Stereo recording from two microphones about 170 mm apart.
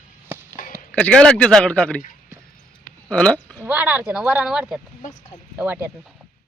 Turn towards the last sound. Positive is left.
turn(degrees=-10)  # may be behind; listen again after turning